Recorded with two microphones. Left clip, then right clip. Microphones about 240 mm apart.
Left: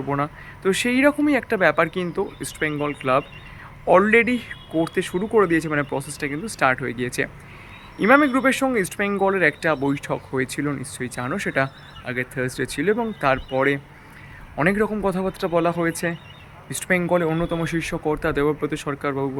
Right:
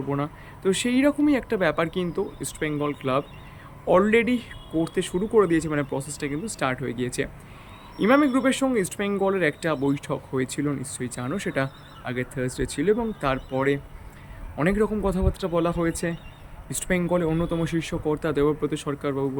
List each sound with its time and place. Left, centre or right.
0.1 s speech: centre